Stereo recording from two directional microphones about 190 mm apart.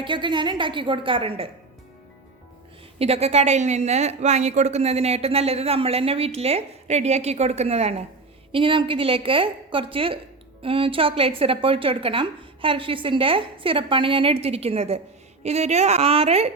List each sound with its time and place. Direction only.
0.0 s a woman's voice: 25° right (ahead or behind)
3.0 s a woman's voice: 35° right (ahead or behind)